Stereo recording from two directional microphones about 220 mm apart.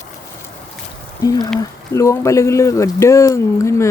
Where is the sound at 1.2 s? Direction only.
15° left (ahead or behind).